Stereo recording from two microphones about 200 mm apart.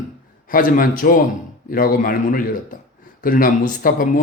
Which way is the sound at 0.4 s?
45° left (ahead or behind).